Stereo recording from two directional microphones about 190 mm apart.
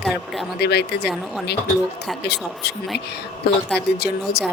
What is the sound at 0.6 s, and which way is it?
Speech, 60° left (ahead or behind).